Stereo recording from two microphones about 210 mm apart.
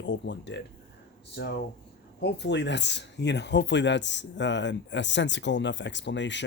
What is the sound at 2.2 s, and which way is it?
Speech, 55° left (ahead or behind).